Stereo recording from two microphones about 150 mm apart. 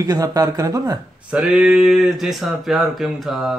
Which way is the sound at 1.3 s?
5° right (ahead or behind).